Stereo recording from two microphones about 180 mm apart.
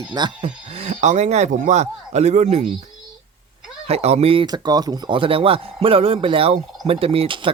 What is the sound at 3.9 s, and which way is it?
Speech, 35° right (ahead or behind).